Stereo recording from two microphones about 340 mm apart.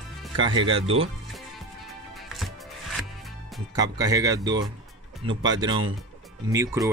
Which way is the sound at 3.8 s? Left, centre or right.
Centre.